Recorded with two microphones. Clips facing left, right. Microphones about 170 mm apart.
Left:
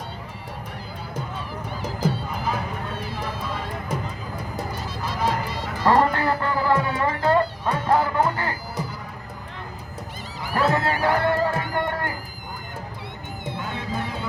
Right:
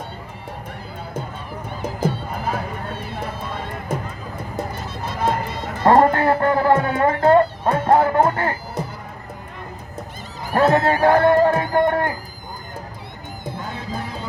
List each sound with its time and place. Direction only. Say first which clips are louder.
2.3 s music: right 2 dB; 50° right (ahead or behind)
4.4 s a sound: right 4 dB; 25° right (ahead or behind)
5.0 s music: right 3 dB; 50° right (ahead or behind)
10.4 s a sound: right 5 dB; 45° right (ahead or behind)
10.8 s music: right 7 dB; 45° right (ahead or behind)
13.4 s music: right 1 dB; 40° right (ahead or behind)